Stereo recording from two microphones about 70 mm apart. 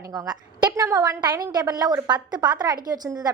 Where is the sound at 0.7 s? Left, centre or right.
Right.